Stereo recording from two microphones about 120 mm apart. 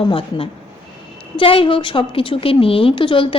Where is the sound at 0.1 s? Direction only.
50° left (ahead or behind).